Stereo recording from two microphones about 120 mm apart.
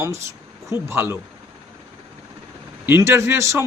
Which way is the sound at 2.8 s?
20° right (ahead or behind).